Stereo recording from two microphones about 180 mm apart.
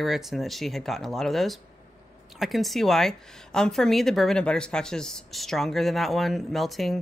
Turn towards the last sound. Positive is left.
turn(degrees=0)  # may be behind; listen again after turning